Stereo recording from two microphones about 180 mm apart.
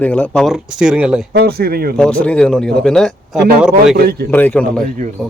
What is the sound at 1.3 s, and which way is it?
Speech, 60° right (ahead or behind).